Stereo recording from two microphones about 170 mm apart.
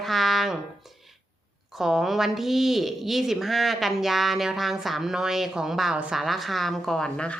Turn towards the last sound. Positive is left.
turn(degrees=5)  # may be behind; listen again after turning